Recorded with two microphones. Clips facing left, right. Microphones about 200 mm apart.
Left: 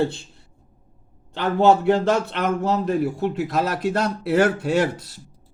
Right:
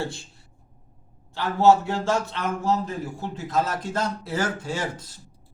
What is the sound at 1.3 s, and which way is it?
Speech, 60° left (ahead or behind).